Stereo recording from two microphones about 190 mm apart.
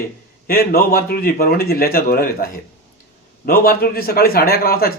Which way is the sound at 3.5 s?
50° left (ahead or behind).